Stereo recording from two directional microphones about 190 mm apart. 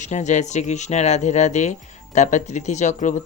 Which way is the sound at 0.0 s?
40° left (ahead or behind).